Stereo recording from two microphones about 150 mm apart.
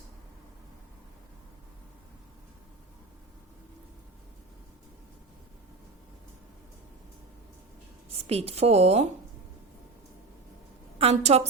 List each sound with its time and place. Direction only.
8.3 s a woman's voice: 45° right (ahead or behind)
10.9 s a woman's voice: 45° right (ahead or behind)